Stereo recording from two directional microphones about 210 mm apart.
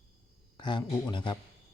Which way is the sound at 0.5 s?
20° left (ahead or behind).